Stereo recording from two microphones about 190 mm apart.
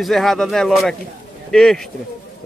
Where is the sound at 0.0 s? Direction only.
Centre (ahead or behind).